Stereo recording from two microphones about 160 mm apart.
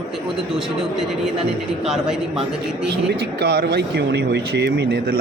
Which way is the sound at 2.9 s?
90° right.